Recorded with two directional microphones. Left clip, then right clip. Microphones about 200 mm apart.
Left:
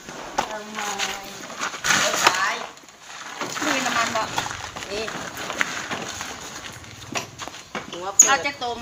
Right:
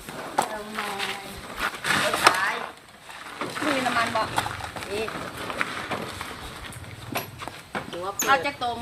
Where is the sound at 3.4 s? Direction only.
40° left (ahead or behind).